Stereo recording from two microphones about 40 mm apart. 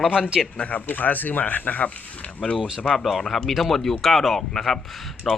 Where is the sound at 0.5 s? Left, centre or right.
Left.